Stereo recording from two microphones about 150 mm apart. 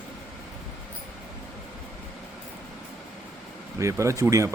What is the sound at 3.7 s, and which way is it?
Speech, 20° right (ahead or behind).